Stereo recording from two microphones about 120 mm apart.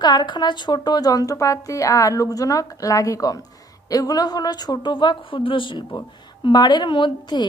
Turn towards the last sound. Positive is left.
turn(degrees=40)  # may be behind; listen again after turning